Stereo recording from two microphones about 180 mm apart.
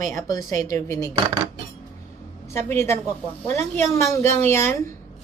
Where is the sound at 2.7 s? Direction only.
15° left (ahead or behind).